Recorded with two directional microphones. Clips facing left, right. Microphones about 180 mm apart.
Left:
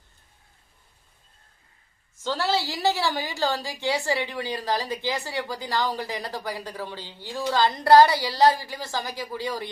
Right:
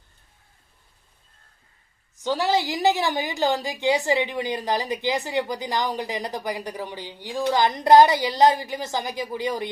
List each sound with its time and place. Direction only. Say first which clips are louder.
2.1 s a woman's voice: right 3 dB; 15° right (ahead or behind)